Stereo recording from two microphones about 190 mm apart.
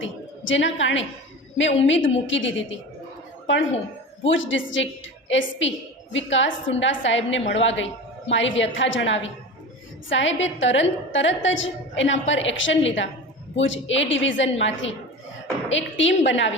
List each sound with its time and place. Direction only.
0.0 s a woman's voice: 80° left